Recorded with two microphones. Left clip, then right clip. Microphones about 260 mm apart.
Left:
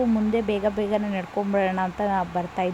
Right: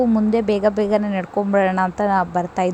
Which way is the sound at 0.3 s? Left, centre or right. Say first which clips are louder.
Right 7 dB; centre.